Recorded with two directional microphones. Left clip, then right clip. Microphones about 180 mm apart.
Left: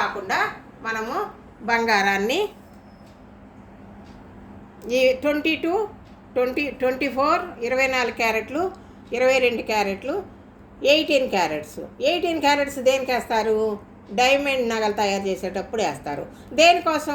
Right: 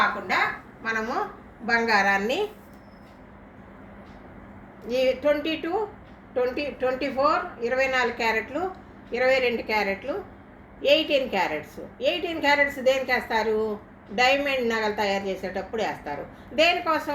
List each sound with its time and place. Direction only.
0.8 s a woman's voice: 50° left (ahead or behind); by 2.4 s 65° left (ahead or behind)
4.9 s a woman's voice: 65° left (ahead or behind)